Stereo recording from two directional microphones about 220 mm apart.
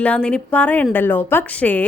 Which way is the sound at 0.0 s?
5° left (ahead or behind).